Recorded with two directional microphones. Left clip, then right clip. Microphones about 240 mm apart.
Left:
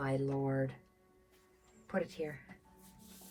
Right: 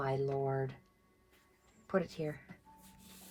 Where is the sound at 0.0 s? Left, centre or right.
Centre.